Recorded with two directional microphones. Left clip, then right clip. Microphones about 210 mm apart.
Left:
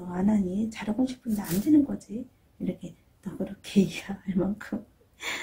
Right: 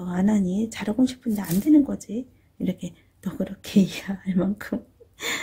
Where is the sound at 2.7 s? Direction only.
50° right (ahead or behind).